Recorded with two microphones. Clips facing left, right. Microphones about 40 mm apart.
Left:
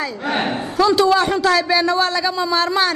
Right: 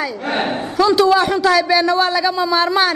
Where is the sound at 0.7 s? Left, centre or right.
Centre.